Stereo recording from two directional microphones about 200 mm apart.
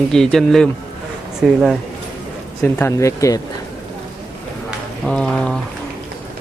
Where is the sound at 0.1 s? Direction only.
Centre (ahead or behind).